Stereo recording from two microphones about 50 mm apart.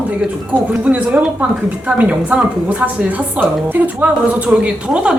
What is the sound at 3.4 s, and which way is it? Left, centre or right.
Speech, right.